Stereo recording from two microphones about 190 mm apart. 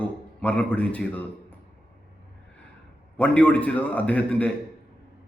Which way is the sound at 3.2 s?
5° left (ahead or behind).